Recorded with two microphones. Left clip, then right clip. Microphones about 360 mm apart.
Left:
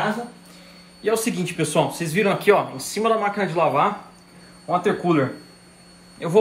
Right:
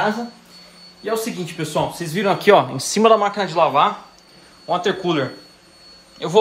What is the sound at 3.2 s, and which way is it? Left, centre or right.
A man's voice, centre.